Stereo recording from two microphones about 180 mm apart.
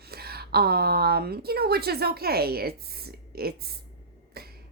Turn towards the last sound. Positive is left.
turn(degrees=-60)  # may be behind; listen again after turning